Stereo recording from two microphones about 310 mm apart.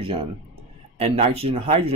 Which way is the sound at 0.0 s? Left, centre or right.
Centre.